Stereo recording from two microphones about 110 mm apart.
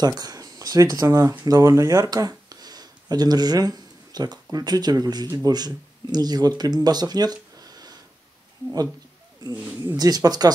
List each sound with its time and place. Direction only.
0.0 s speech: 35° right (ahead or behind)
9.4 s speech: 40° right (ahead or behind)